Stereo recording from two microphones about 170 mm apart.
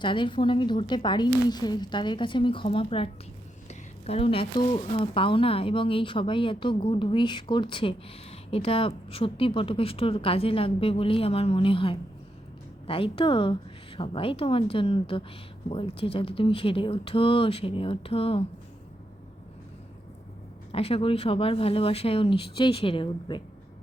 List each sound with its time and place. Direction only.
0.0 s a woman's voice: 30° left (ahead or behind)
20.7 s speech: 35° left (ahead or behind)